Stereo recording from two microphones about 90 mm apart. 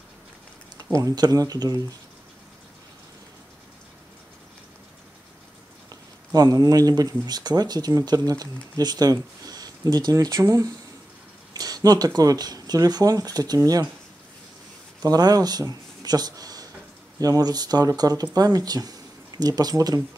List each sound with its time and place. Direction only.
0.9 s speech: 45° right (ahead or behind)
5.9 s speech: 45° right (ahead or behind)
15.0 s speech: 45° right (ahead or behind)